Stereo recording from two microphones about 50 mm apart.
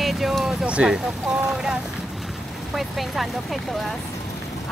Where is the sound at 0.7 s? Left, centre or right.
Right.